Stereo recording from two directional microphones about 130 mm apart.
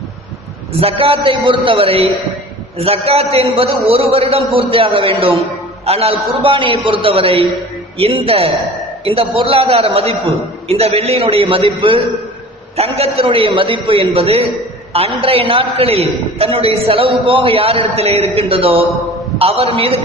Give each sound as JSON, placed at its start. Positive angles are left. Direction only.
{"t": 0.7, "sound": "a man's voice", "side_deg": -45}